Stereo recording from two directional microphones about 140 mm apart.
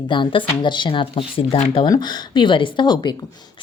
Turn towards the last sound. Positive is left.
turn(degrees=30)  # may be behind; listen again after turning